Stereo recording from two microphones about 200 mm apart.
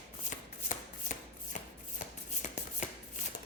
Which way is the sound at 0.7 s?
40° left (ahead or behind).